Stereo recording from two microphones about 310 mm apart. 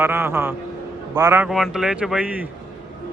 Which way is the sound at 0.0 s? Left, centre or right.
Centre.